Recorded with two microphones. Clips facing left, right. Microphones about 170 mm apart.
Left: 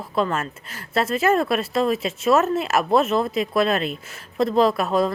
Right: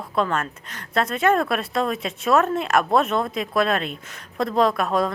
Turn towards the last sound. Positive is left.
turn(degrees=0)  # may be behind; listen again after turning